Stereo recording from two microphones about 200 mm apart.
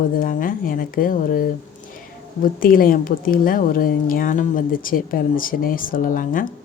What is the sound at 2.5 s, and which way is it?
A woman's voice, 45° left (ahead or behind).